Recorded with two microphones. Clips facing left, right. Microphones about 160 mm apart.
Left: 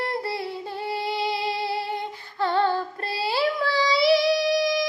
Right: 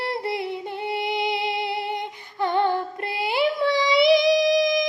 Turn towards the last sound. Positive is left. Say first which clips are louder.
# right 3 dB
turn(degrees=-20)  # may be behind; listen again after turning